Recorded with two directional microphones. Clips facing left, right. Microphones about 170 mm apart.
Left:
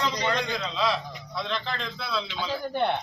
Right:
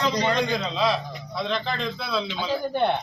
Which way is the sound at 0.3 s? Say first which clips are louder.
Right 4 dB; 25° right (ahead or behind).